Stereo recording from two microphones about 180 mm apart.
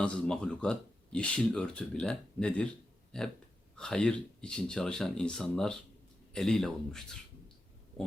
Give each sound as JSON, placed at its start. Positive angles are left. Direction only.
{"t": 0.0, "sound": "speech", "side_deg": 5}